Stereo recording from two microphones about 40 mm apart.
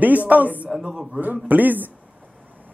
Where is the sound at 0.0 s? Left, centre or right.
Right.